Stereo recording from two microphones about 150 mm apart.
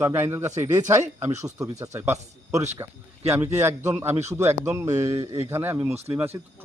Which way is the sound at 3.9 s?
15° right (ahead or behind).